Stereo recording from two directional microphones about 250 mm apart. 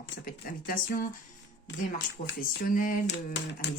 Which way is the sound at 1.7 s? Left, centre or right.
Left.